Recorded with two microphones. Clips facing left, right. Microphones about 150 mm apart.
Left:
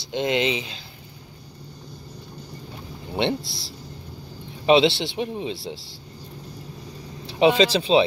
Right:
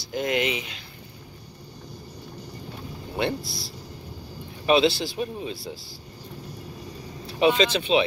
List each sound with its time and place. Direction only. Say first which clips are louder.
0.0 s speech: left 2 dB; 25° left (ahead or behind)
3.2 s speech: left 3 dB; 25° left (ahead or behind)
7.2 s speech: left 3 dB; 30° left (ahead or behind)